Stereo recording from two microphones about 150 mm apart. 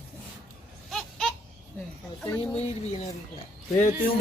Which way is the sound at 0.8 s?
Centre (ahead or behind).